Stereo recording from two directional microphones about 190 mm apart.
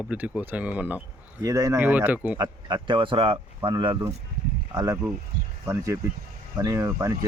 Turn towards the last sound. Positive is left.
turn(degrees=-15)  # may be behind; listen again after turning